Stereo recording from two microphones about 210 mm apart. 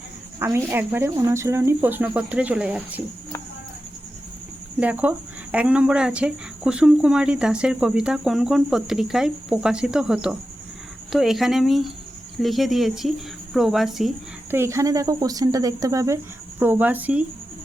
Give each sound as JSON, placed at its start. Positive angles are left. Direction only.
{"t": 0.3, "sound": "speech", "side_deg": -10}
{"t": 4.8, "sound": "speech", "side_deg": -5}
{"t": 14.5, "sound": "speech", "side_deg": -10}